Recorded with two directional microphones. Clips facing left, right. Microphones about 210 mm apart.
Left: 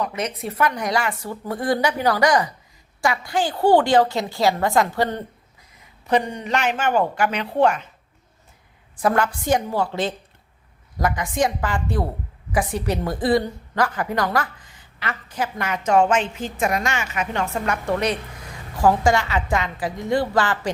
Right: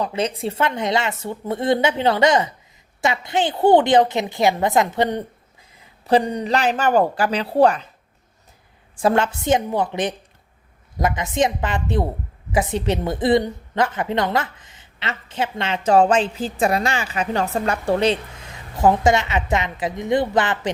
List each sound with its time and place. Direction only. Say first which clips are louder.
0.0 s a woman's voice: right 3 dB; 30° right (ahead or behind)
5.7 s speech: right 3 dB; 30° right (ahead or behind)
9.0 s a woman's voice: right 2 dB; 25° right (ahead or behind)